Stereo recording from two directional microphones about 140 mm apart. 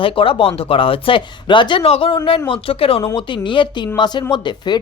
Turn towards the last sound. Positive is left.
turn(degrees=35)  # may be behind; listen again after turning